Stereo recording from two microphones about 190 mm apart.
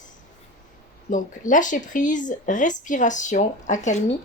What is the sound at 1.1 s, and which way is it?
Speech, 45° left (ahead or behind).